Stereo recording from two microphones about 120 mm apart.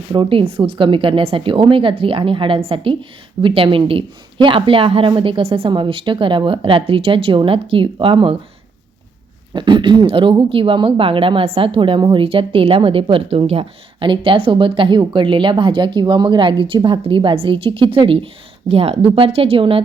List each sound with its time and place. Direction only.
0.1 s speech: 45° right (ahead or behind)
9.5 s speech: 40° right (ahead or behind)